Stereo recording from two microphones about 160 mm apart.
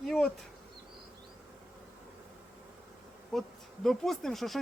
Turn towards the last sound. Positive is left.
turn(degrees=0)  # may be behind; listen again after turning